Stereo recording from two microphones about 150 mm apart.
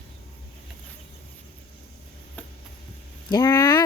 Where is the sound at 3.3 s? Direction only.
25° left (ahead or behind).